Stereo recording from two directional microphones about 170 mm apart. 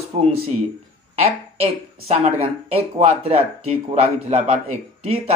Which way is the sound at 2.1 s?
35° right (ahead or behind).